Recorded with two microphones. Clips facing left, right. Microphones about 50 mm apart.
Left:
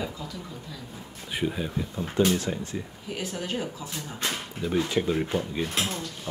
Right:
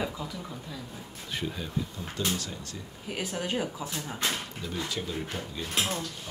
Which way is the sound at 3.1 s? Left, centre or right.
Centre.